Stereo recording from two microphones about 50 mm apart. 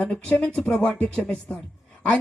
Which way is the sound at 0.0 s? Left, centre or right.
Left.